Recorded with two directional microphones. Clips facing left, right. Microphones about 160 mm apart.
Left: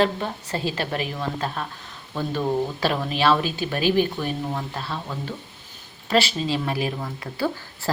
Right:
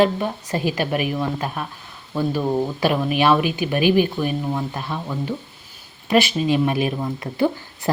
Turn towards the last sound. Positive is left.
turn(degrees=-20)  # may be behind; listen again after turning